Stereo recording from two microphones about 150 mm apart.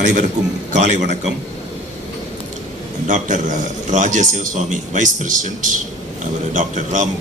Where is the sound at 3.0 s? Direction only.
55° right (ahead or behind).